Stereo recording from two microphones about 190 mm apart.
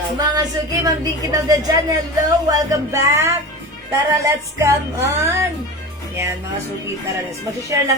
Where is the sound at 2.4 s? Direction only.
15° right (ahead or behind).